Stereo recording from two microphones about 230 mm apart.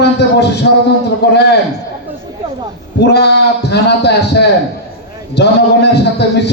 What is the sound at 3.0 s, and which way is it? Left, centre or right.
A man's voice, left.